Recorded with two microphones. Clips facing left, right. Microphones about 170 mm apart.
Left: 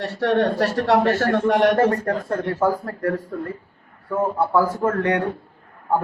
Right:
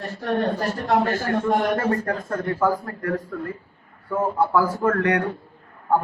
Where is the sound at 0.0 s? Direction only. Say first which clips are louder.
Left 4 dB; 80° left.